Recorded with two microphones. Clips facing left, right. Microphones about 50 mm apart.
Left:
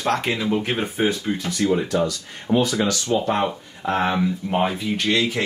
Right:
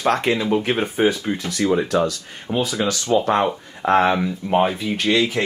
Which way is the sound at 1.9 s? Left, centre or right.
Right.